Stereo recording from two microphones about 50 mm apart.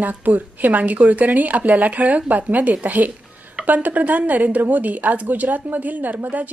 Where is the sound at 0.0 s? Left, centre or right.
Right.